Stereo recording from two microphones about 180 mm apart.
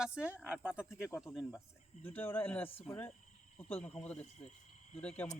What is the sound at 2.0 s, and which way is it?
Speech, 10° left (ahead or behind).